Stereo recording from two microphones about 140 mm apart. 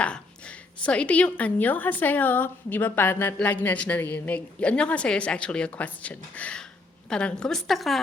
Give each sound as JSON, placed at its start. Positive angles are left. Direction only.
{"t": 0.0, "sound": "a woman's voice", "side_deg": 10}